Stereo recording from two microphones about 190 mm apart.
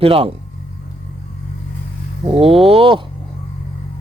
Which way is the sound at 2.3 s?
30° right (ahead or behind).